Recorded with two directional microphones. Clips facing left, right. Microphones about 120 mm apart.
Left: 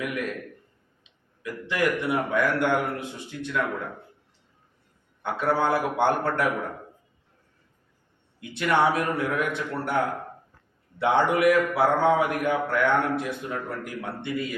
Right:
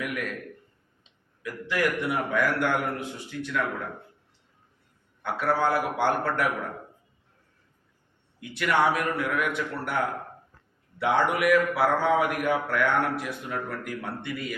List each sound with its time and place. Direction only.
0.0 s a man's voice: 25° left (ahead or behind)
1.4 s a man's voice: 25° left (ahead or behind)
5.2 s a man's voice: 25° left (ahead or behind)
8.4 s a man's voice: 25° left (ahead or behind)